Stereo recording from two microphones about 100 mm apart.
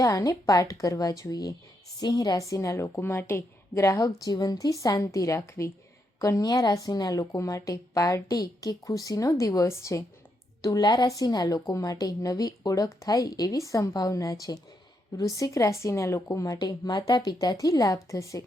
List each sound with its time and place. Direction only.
0.0 s a woman's voice: 35° left (ahead or behind)
10.6 s a woman's voice: 40° left (ahead or behind)